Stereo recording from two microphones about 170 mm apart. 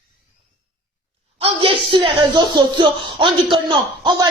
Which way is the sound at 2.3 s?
25° right (ahead or behind).